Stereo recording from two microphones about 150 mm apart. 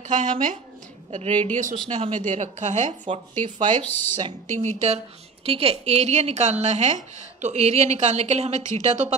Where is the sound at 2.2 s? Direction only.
50° right (ahead or behind).